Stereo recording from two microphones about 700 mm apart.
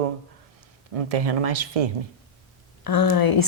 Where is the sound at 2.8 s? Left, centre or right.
Left.